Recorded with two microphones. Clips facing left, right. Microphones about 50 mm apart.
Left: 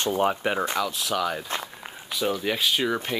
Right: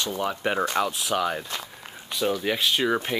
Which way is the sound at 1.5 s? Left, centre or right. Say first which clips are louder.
Left 3 dB; centre.